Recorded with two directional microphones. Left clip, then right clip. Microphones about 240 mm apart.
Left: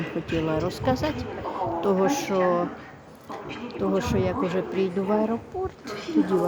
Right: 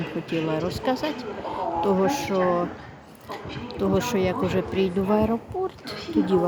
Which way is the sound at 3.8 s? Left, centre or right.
Centre.